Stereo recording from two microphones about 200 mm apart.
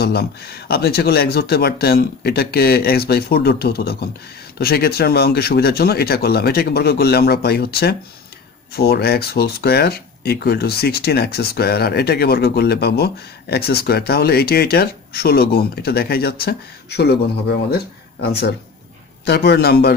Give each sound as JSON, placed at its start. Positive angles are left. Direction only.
{"t": 0.0, "sound": "a man's voice", "side_deg": 55}